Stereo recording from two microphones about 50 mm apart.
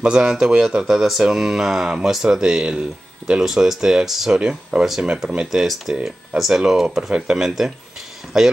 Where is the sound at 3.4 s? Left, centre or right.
Centre.